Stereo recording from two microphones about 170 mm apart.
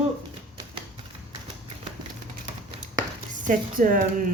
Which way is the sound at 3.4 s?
50° right (ahead or behind).